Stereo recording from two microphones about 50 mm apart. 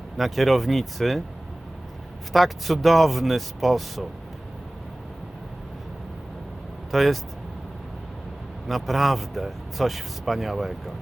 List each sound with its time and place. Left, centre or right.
0.2 s speech: centre
2.3 s speech: centre
6.9 s speech: centre
8.6 s speech: centre